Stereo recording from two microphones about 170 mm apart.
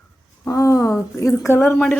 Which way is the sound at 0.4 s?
20° left (ahead or behind).